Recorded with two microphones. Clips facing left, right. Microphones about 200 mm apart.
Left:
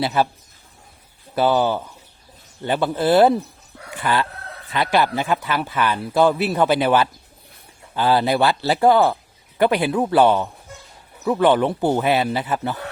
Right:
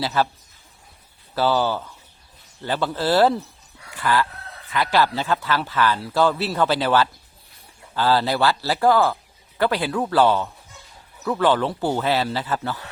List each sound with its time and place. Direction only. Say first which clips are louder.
0.0 s a man's voice: left 2 dB; 15° left (ahead or behind)
1.4 s a man's voice: left 3 dB; 15° left (ahead or behind)